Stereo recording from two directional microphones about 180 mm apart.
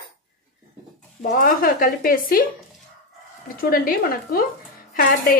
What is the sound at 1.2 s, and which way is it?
Speech, 50° left (ahead or behind).